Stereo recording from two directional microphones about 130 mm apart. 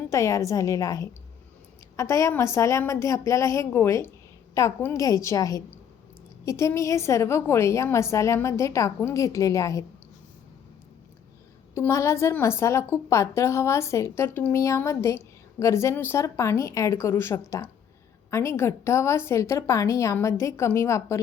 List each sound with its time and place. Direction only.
0.1 s a woman's voice: 25° left (ahead or behind)
11.7 s a woman's voice: 20° left (ahead or behind)